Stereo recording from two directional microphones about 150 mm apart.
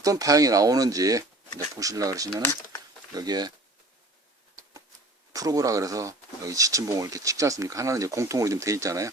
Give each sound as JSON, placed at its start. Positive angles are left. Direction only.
{"t": 0.0, "sound": "speech", "side_deg": -20}
{"t": 2.4, "sound": "speech", "side_deg": 15}
{"t": 3.2, "sound": "speech", "side_deg": -25}
{"t": 5.3, "sound": "speech", "side_deg": -25}